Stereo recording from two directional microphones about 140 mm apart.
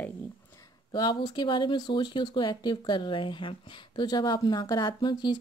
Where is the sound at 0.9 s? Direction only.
30° left (ahead or behind).